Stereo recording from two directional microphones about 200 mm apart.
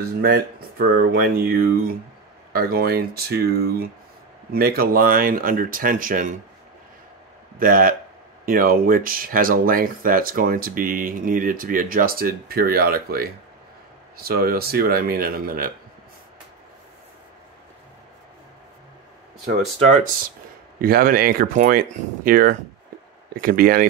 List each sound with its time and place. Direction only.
0.2 s speech: 50° right (ahead or behind)
7.5 s speech: 45° right (ahead or behind)
20.8 s speech: 45° right (ahead or behind)